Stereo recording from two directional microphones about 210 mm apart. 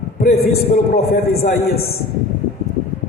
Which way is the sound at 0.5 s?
45° left (ahead or behind).